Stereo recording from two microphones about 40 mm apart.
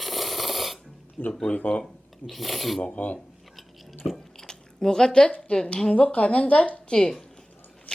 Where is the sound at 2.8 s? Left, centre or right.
Left.